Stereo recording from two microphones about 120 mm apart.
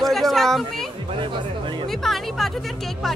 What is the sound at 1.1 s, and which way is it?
Speech, 45° right (ahead or behind).